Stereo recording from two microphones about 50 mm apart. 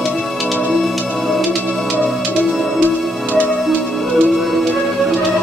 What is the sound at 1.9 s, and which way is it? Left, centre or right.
Music, left.